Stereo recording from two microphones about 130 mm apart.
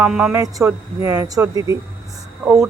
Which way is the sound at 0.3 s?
25° right (ahead or behind).